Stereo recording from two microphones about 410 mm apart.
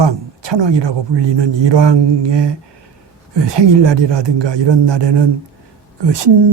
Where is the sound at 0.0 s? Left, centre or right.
Right.